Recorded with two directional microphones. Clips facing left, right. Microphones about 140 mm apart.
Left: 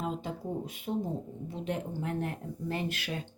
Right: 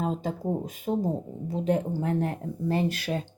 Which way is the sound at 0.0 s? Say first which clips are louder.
Right 6 dB; 40° right (ahead or behind).